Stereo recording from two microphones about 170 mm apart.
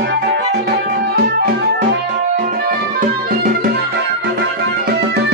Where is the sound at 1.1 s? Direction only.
65° right (ahead or behind).